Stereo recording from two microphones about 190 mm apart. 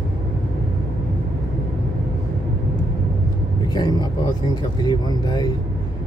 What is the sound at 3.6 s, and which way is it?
Speech, 20° left (ahead or behind).